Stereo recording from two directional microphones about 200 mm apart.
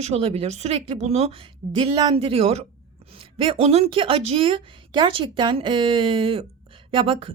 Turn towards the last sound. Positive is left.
turn(degrees=-25)  # may be behind; listen again after turning